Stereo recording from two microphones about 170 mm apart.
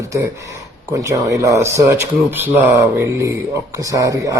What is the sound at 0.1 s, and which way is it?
Speech, 20° right (ahead or behind).